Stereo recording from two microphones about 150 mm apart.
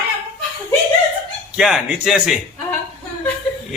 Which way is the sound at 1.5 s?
5° right (ahead or behind).